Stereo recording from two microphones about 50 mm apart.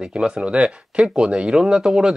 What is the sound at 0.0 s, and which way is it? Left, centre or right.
Speech, centre.